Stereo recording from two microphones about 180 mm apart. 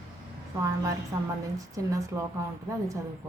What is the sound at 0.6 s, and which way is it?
A woman's voice, 15° right (ahead or behind).